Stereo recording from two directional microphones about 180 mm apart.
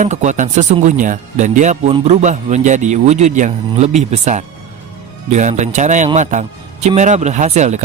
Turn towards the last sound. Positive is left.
turn(degrees=-40)  # may be behind; listen again after turning